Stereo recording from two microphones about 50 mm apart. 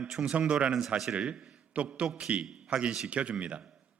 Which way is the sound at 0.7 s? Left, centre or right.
Centre.